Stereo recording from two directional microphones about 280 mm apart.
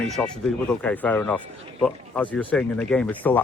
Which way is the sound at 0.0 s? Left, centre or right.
Centre.